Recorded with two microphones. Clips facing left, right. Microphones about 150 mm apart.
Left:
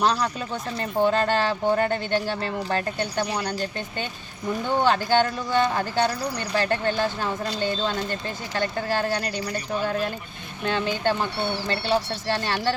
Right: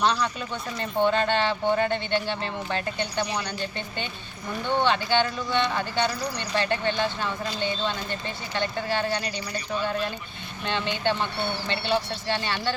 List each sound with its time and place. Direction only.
0.0 s speech: 40° left (ahead or behind)
10.7 s speech: 45° left (ahead or behind)